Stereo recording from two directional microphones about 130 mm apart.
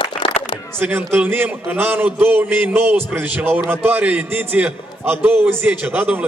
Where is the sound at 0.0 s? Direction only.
40° left (ahead or behind).